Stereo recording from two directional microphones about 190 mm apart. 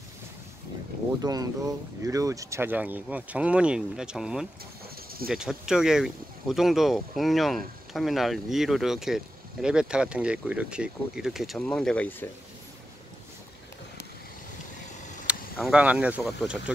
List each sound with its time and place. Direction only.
1.2 s speech: 20° right (ahead or behind); by 12.3 s 10° left (ahead or behind)
15.3 s vehicle: 5° right (ahead or behind)
15.7 s speech: 5° right (ahead or behind)